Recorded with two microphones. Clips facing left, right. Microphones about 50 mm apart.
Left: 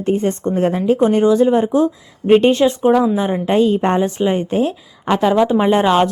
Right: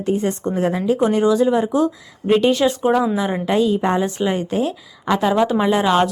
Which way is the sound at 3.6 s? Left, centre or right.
Left.